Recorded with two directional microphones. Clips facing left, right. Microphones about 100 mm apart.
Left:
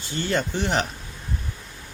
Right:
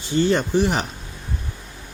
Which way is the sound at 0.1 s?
20° right (ahead or behind).